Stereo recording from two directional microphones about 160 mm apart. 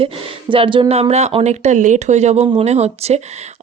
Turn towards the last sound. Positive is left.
turn(degrees=-40)  # may be behind; listen again after turning